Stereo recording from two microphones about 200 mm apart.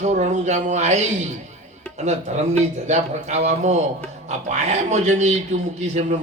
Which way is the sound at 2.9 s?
35° right (ahead or behind).